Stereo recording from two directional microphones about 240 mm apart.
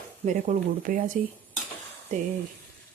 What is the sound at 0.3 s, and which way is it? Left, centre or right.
Speech, right.